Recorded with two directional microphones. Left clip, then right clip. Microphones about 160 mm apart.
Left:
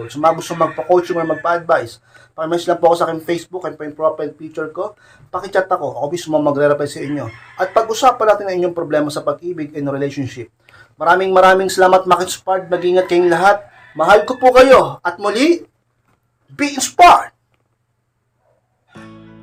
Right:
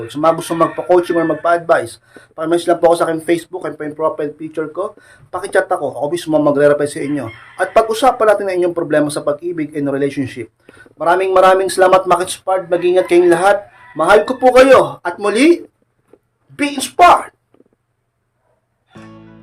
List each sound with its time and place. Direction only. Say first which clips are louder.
0.1 s speech: right 1 dB; 30° right (ahead or behind)
10.9 s speech: even; 10° right (ahead or behind)
16.6 s a woman's voice: even; 15° left (ahead or behind)
18.9 s music: even; centre (ahead or behind)